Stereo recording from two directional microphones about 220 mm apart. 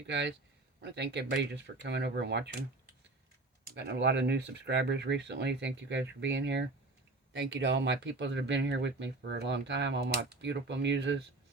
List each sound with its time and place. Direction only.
0.1 s speech: 55° right (ahead or behind)
3.8 s speech: 50° right (ahead or behind)